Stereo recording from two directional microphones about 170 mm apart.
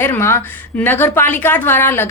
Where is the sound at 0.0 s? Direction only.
15° left (ahead or behind).